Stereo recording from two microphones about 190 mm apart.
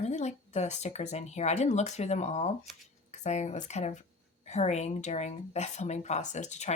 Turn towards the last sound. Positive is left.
turn(degrees=35)  # may be behind; listen again after turning